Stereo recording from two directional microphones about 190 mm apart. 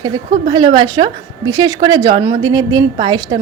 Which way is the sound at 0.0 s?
20° right (ahead or behind).